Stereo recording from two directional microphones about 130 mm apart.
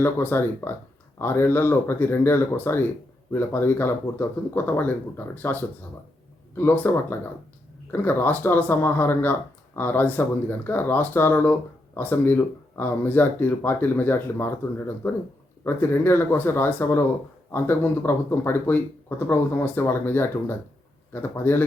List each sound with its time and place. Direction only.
0.0 s speech: 15° left (ahead or behind)